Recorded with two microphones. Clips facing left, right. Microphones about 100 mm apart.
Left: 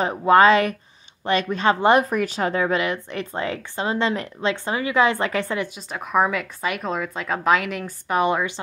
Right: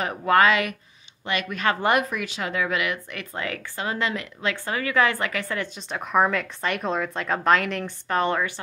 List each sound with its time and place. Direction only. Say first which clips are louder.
0.0 s a woman's voice: left 4 dB; 25° left (ahead or behind)
5.6 s a woman's voice: left 2 dB; 5° left (ahead or behind)